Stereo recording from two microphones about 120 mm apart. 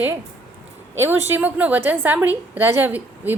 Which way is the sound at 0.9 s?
20° right (ahead or behind).